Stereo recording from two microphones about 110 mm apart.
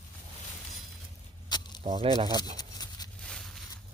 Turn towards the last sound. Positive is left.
turn(degrees=5)  # may be behind; listen again after turning